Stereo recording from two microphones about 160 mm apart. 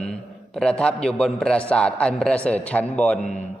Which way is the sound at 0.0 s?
5° left (ahead or behind).